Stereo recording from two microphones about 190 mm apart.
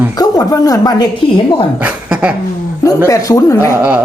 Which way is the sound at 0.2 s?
20° left (ahead or behind).